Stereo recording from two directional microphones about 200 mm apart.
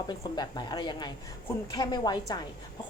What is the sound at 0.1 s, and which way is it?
Speech, 20° left (ahead or behind).